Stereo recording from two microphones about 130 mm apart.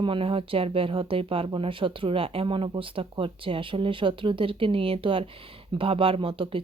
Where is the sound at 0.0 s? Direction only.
45° right (ahead or behind).